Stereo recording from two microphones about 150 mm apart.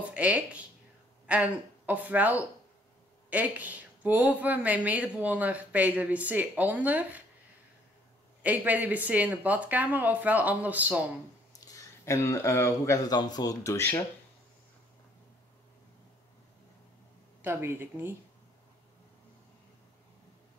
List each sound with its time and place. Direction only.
0.1 s speech: 10° right (ahead or behind)
8.4 s speech: 10° right (ahead or behind)
11.6 s a man's voice: 20° left (ahead or behind)
17.4 s speech: 15° right (ahead or behind)